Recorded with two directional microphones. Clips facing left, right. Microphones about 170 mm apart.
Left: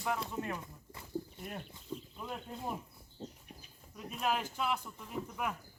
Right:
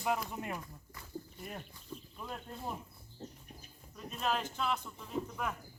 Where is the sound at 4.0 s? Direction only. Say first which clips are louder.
Even; 10° left (ahead or behind).